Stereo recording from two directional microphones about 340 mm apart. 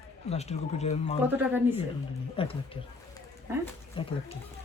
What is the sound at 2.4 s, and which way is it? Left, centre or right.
Speech, centre.